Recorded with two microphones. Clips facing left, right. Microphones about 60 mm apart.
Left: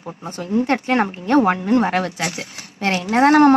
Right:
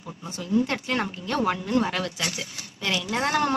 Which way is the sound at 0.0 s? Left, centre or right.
Left.